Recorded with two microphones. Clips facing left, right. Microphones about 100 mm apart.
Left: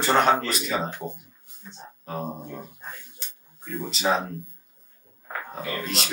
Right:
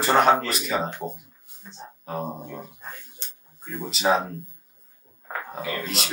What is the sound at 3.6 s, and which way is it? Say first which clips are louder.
Speech: right 1 dB; 5° right (ahead or behind).